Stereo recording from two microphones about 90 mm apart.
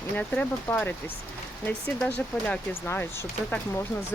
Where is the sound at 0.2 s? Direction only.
20° left (ahead or behind).